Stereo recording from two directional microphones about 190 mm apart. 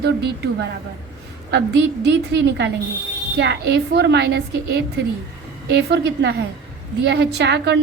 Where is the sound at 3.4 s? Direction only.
65° right (ahead or behind).